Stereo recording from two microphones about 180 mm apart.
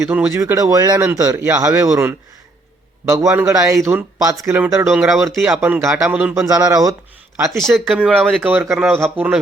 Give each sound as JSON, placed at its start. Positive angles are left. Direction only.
{"t": 0.1, "sound": "speech", "side_deg": -10}
{"t": 7.5, "sound": "speech", "side_deg": 0}
{"t": 8.4, "sound": "speech", "side_deg": -10}